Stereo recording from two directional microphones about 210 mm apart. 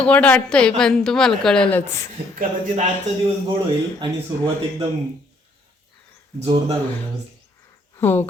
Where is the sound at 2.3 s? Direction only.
35° right (ahead or behind).